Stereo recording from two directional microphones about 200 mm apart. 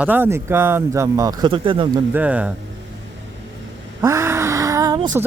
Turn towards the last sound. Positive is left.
turn(degrees=-20)  # may be behind; listen again after turning